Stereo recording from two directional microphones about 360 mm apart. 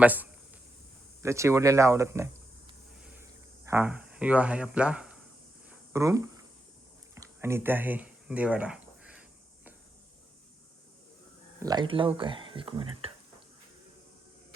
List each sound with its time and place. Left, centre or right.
0.0 s speech: centre
3.7 s speech: centre
11.6 s speech: centre